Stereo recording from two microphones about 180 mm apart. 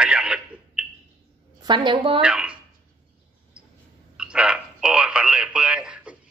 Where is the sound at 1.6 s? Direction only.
25° right (ahead or behind).